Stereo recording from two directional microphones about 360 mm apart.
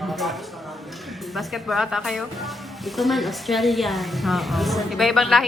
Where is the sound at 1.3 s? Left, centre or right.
Centre.